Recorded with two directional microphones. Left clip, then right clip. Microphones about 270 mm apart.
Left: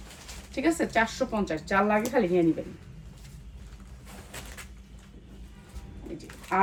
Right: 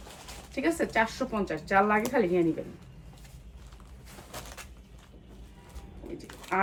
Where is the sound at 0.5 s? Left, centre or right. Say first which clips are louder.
Left 2 dB; centre.